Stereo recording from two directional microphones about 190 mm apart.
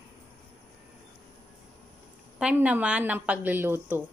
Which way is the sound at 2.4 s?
5° right (ahead or behind).